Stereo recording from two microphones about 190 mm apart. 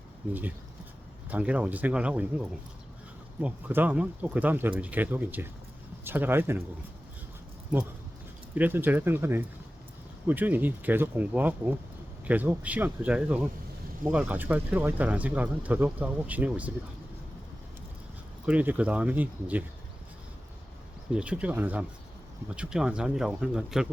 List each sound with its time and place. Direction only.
1.3 s speech: 5° right (ahead or behind)
3.4 s speech: 10° right (ahead or behind)
8.5 s speech: 10° right (ahead or behind)
18.4 s speech: 10° right (ahead or behind)
21.1 s speech: 5° right (ahead or behind)